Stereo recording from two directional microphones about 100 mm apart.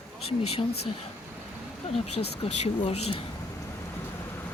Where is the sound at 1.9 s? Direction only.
80° left.